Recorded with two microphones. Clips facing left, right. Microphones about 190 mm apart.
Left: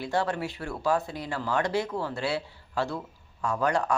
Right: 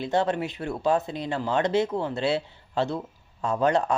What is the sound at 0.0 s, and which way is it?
Speech, 20° right (ahead or behind).